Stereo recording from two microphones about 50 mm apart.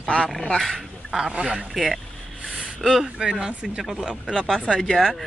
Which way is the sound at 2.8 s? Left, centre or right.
Centre.